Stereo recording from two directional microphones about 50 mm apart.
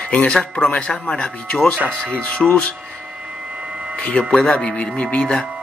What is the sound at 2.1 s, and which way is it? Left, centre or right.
Speech, left.